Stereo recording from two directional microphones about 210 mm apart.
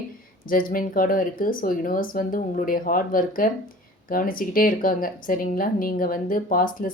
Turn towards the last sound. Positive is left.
turn(degrees=40)  # may be behind; listen again after turning